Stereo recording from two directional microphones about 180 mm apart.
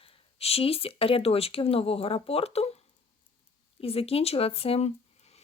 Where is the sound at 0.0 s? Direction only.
30° left (ahead or behind).